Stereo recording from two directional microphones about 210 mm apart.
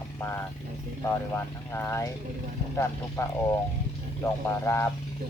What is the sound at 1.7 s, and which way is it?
Speech, 10° left (ahead or behind).